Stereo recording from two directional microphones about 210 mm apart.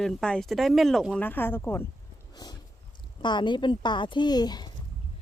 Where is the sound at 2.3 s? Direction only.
20° left (ahead or behind).